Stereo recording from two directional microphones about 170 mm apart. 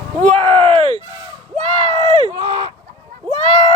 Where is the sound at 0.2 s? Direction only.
40° right (ahead or behind).